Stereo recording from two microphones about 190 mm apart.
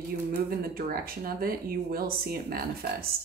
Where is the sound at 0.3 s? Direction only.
50° right (ahead or behind).